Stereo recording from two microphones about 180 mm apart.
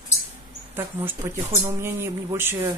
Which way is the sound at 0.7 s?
15° right (ahead or behind).